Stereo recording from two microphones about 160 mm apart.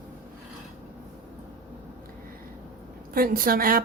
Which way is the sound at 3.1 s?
65° right (ahead or behind).